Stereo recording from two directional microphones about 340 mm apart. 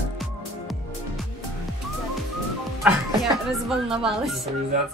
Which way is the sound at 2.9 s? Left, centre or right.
Centre.